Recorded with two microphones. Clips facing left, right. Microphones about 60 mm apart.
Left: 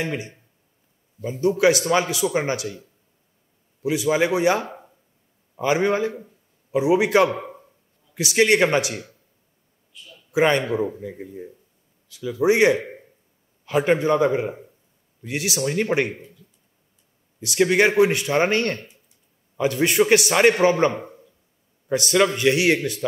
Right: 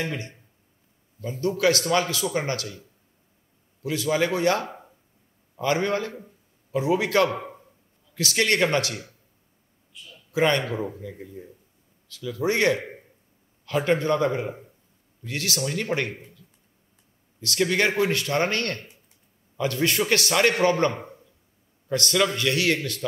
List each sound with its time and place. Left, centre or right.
0.0 s a man's voice: left
3.8 s a man's voice: centre
10.3 s a man's voice: centre
17.4 s speech: centre
20.9 s a sound: left
21.8 s speech: centre